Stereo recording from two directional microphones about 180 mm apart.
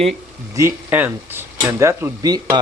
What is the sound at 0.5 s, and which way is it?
Speech, 15° right (ahead or behind).